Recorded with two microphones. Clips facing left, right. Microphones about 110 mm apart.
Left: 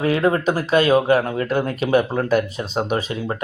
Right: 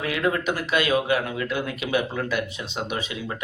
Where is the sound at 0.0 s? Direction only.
35° left (ahead or behind).